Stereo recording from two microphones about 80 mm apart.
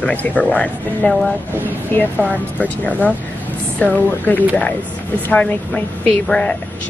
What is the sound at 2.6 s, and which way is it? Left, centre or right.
Speech, centre.